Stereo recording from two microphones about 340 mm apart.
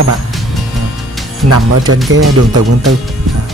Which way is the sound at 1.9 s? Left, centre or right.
Right.